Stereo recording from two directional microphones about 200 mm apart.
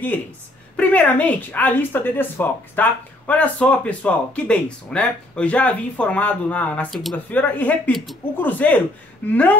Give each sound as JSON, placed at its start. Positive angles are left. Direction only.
{"t": 0.7, "sound": "speech", "side_deg": 5}